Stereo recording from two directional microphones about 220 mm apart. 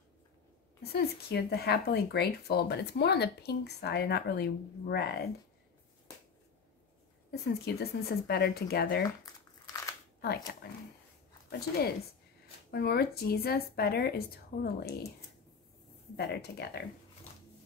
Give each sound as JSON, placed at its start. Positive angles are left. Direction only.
{"t": 0.9, "sound": "speech", "side_deg": 45}
{"t": 7.2, "sound": "speech", "side_deg": 45}
{"t": 9.2, "sound": "crumpling", "side_deg": 15}
{"t": 12.8, "sound": "speech", "side_deg": 45}
{"t": 16.2, "sound": "speech", "side_deg": 45}